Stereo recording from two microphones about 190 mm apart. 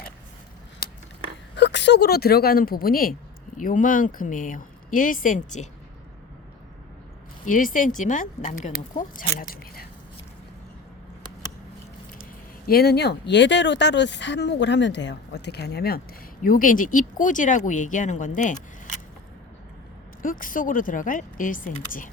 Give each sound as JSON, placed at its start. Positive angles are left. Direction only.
{"t": 1.5, "sound": "a woman's voice", "side_deg": 65}
{"t": 7.4, "sound": "speech", "side_deg": 45}
{"t": 12.6, "sound": "speech", "side_deg": 55}
{"t": 20.2, "sound": "speech", "side_deg": 45}